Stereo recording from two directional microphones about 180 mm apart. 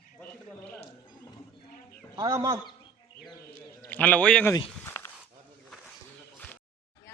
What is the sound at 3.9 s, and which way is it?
Speech, 10° left (ahead or behind).